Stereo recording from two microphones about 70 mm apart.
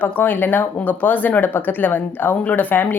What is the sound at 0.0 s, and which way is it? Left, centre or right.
A woman's voice, left.